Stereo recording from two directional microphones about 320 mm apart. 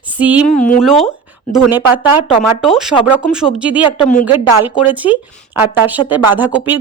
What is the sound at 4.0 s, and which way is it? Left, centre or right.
Speech, left.